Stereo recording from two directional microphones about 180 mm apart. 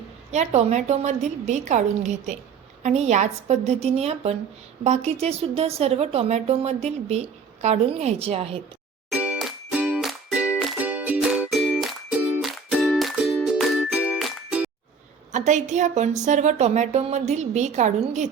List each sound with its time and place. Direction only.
0.3 s a woman's voice: 40° right (ahead or behind)
9.1 s music: 5° right (ahead or behind)
15.3 s a woman's voice: 40° right (ahead or behind)